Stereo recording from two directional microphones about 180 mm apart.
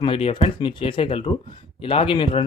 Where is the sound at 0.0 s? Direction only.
30° left (ahead or behind).